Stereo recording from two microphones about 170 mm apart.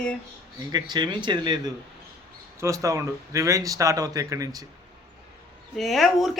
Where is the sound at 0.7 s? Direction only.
25° right (ahead or behind).